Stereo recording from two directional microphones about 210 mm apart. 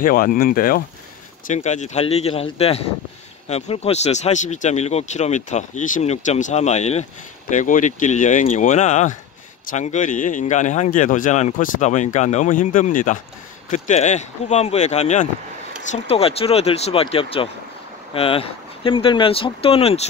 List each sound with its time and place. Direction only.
0.0 s speech: 40° left (ahead or behind)